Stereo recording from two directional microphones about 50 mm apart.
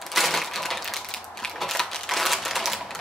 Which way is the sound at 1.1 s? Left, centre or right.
Centre.